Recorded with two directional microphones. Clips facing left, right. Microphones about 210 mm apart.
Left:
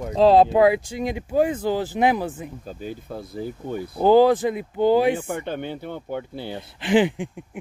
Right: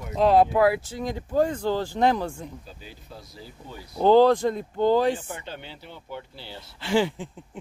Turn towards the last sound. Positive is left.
turn(degrees=15)  # may be behind; listen again after turning